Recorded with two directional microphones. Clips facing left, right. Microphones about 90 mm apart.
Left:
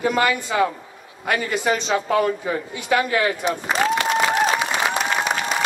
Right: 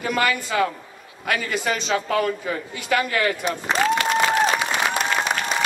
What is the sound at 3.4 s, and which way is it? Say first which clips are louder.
Applause: left 1 dB; 5° left (ahead or behind).